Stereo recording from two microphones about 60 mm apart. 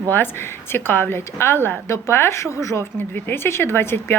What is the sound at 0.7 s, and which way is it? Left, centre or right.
Speech, left.